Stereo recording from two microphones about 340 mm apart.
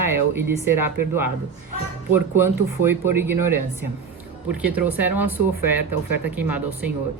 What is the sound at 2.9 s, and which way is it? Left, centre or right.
Speech, centre.